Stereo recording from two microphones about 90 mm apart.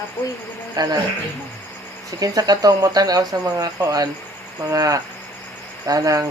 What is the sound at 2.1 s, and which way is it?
Speech, 40° right (ahead or behind).